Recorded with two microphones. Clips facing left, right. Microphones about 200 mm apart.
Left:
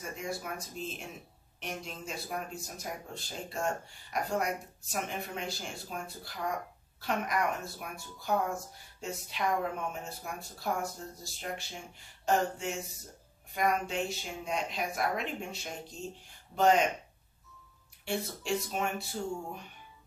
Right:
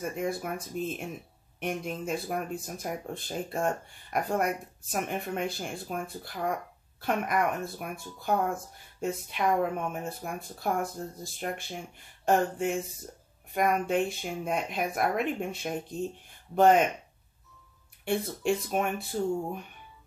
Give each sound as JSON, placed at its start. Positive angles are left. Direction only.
{"t": 0.1, "sound": "speech", "side_deg": -55}
{"t": 18.0, "sound": "speech", "side_deg": -55}